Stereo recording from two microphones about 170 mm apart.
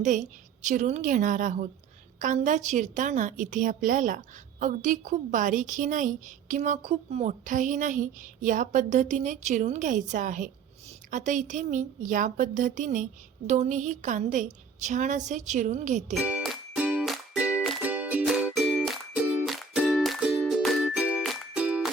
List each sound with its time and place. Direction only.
0.0 s a woman's voice: 45° right (ahead or behind)
16.2 s music: 5° right (ahead or behind)